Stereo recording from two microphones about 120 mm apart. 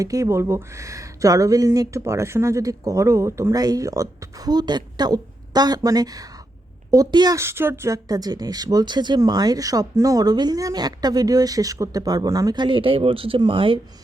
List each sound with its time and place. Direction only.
0.0 s speech: 30° right (ahead or behind)
7.3 s speech: 20° right (ahead or behind)
12.6 s speech: 45° right (ahead or behind)